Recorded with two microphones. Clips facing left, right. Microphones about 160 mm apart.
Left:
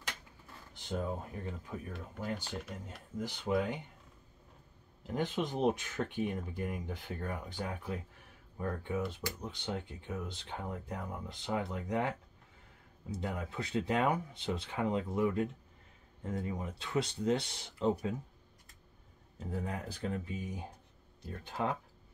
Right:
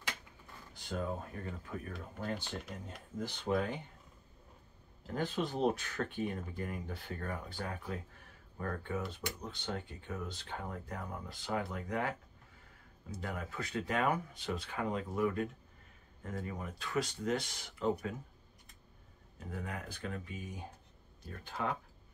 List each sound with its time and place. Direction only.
0.7 s speech: 20° left (ahead or behind); by 3.3 s centre (ahead or behind)
3.3 s speech: 15° left (ahead or behind)
5.0 s speech: 15° left (ahead or behind)
13.2 s speech: 25° left (ahead or behind)
19.4 s speech: 30° left (ahead or behind)